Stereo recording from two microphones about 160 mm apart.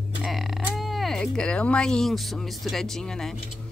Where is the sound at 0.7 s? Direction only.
Centre (ahead or behind).